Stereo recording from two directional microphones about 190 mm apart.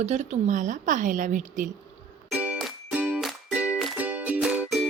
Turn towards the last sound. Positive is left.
turn(degrees=0)  # may be behind; listen again after turning